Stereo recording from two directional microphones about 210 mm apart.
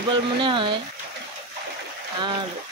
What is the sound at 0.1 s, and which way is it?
Speech, 25° right (ahead or behind).